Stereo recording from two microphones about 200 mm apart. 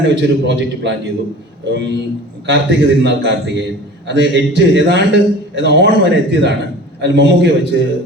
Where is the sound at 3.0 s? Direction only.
60° right (ahead or behind).